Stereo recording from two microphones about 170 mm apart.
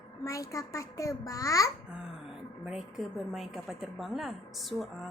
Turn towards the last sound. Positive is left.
turn(degrees=0)  # may be behind; listen again after turning